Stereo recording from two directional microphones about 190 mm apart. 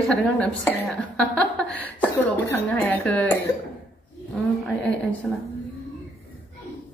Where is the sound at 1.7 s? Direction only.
10° left (ahead or behind).